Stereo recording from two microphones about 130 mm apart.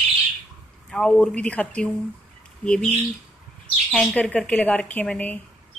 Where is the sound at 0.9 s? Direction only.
5° left (ahead or behind).